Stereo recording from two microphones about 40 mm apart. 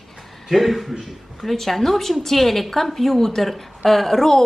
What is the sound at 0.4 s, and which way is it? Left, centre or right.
A woman's voice, centre.